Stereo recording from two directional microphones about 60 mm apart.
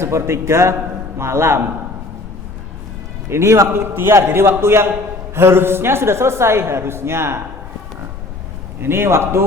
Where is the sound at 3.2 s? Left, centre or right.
Right.